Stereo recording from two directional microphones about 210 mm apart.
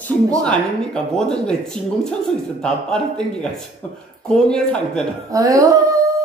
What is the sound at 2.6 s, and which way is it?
A man's voice, 5° left (ahead or behind).